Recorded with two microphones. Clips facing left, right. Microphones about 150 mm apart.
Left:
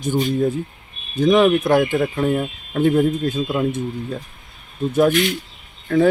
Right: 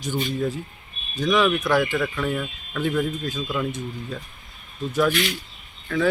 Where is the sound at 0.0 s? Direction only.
45° left (ahead or behind).